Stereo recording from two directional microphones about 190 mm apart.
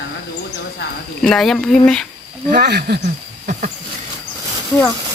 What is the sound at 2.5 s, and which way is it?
Speech, 55° right (ahead or behind).